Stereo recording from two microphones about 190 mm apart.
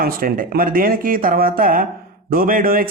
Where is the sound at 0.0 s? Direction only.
50° right (ahead or behind).